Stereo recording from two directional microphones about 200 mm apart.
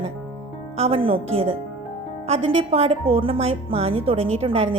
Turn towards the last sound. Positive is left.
turn(degrees=-30)  # may be behind; listen again after turning